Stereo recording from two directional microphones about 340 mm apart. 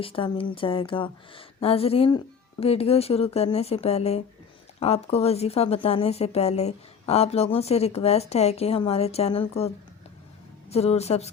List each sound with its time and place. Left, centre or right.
0.0 s a woman's voice: centre